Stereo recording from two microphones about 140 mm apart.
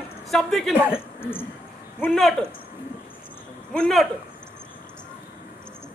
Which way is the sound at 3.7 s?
5° left (ahead or behind).